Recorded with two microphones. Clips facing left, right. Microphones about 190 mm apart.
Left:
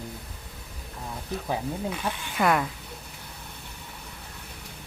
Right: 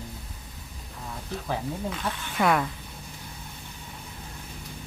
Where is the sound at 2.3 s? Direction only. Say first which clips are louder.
Even; centre (ahead or behind).